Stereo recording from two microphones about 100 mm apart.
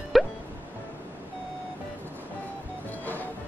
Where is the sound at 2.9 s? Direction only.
15° left (ahead or behind).